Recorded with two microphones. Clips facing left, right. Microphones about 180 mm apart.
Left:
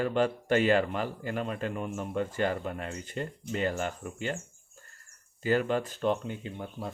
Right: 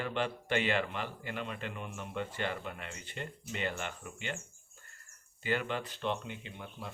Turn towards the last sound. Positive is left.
turn(degrees=40)  # may be behind; listen again after turning